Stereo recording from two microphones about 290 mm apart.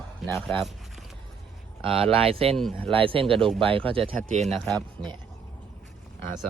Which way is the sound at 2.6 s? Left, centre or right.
Centre.